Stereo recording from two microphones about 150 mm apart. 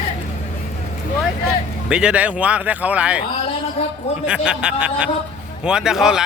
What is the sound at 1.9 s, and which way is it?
Speech, 5° right (ahead or behind).